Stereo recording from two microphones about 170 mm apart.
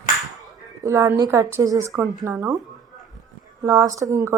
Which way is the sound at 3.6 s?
20° right (ahead or behind).